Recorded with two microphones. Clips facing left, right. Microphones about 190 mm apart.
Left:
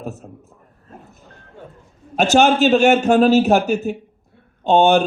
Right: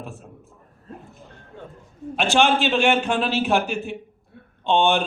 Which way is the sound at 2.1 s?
40° left (ahead or behind).